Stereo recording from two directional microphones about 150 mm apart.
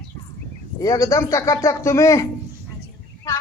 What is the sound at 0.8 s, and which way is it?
Speech, 20° left (ahead or behind).